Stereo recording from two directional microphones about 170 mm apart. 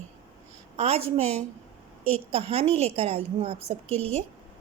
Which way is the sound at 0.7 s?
40° right (ahead or behind).